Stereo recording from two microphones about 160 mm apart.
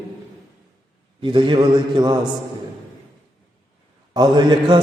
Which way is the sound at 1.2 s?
30° right (ahead or behind).